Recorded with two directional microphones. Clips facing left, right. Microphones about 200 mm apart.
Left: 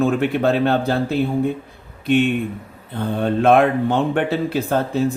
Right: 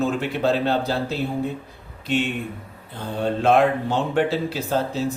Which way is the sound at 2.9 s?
55° left (ahead or behind).